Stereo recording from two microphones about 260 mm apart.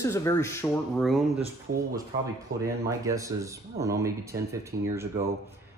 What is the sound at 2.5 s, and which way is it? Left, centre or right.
Speech, right.